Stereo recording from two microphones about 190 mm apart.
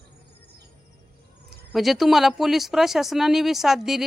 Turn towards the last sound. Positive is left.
turn(degrees=0)  # may be behind; listen again after turning